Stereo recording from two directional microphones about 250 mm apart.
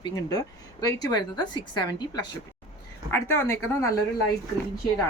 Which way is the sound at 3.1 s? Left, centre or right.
Centre.